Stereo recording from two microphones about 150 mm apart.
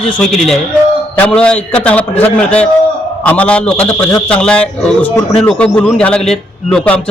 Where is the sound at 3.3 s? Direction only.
10° left (ahead or behind).